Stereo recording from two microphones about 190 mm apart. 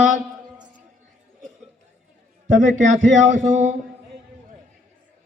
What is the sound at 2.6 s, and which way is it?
Speech, 40° right (ahead or behind).